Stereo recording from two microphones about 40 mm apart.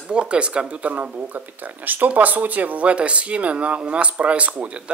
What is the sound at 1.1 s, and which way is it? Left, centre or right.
Speech, right.